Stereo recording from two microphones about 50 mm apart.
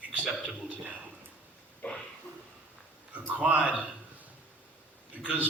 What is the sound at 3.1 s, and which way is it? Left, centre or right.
Speech, right.